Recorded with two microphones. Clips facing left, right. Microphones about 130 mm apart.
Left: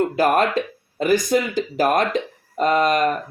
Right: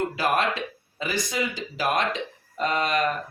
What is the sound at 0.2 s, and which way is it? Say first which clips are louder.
Speech: left 7 dB; 45° left (ahead or behind).